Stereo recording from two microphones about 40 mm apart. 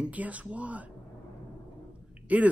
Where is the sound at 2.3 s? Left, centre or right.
Right.